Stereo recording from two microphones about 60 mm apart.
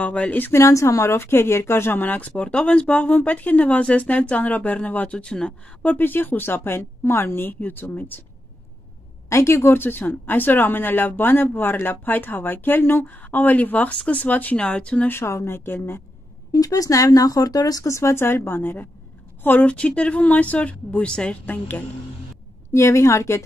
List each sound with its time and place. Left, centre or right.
0.0 s speech: left
0.5 s speech: left
5.1 s speech: centre
5.9 s speech: left
9.3 s speech: left
15.0 s speech: left
16.5 s speech: left
19.6 s speech: centre
21.5 s speech: left
22.7 s a woman's voice: left